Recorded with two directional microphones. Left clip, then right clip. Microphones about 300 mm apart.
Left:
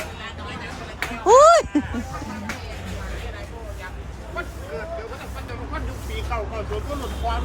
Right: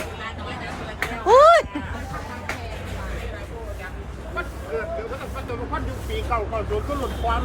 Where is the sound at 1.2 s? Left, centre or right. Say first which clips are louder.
Left 1 dB; centre.